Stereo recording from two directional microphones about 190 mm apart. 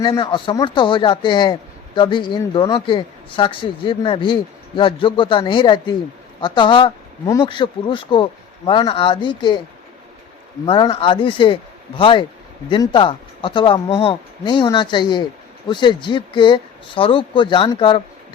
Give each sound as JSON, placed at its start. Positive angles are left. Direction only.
{"t": 0.0, "sound": "speech", "side_deg": 25}
{"t": 10.7, "sound": "speech", "side_deg": 25}